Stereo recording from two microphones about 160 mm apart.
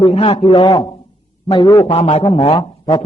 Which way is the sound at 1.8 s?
40° left (ahead or behind).